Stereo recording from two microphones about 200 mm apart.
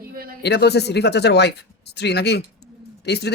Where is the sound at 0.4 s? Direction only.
55° left (ahead or behind).